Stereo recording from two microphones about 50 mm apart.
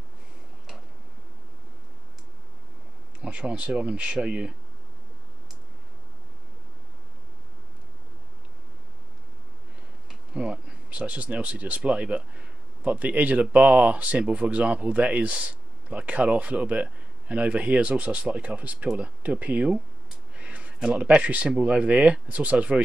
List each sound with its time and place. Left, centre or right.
3.2 s speech: right
10.0 s insect: centre
11.0 s speech: right
20.3 s a sound: right
20.8 s speech: centre